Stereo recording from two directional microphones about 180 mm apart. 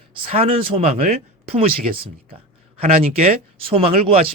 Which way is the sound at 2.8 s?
35° right (ahead or behind).